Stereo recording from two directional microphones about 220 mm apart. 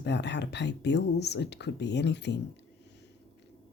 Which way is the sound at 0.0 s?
50° left (ahead or behind).